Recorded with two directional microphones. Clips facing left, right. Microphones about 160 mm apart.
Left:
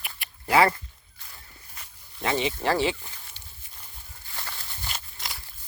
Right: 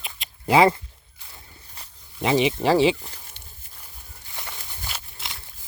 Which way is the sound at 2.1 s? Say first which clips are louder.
Right 6 dB; 15° right (ahead or behind).